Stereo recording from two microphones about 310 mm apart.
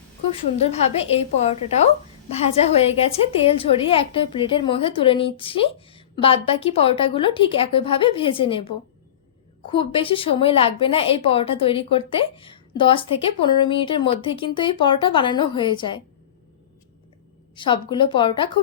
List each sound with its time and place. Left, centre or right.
0.3 s a woman's voice: centre
17.5 s a woman's voice: centre